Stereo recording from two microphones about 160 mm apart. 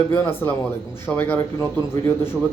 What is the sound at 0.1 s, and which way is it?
A man's voice, 10° left (ahead or behind).